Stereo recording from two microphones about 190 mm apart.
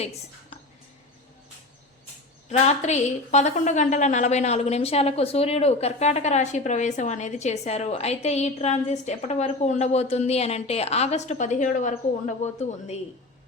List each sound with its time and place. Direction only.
2.5 s a woman's voice: 35° left (ahead or behind)